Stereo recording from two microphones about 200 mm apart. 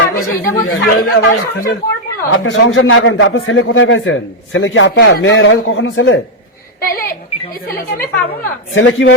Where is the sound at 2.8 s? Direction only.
90° left; by 6.2 s 65° left (ahead or behind).